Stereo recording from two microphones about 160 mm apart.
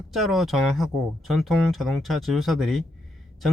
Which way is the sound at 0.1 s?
Centre (ahead or behind).